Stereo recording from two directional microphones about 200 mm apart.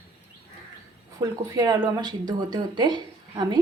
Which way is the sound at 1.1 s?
20° right (ahead or behind).